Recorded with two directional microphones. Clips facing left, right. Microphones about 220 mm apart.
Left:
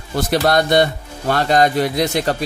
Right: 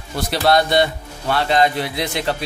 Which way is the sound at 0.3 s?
50° left (ahead or behind).